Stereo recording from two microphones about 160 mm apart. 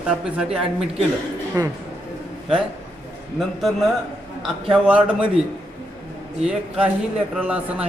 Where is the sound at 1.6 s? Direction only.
20° right (ahead or behind).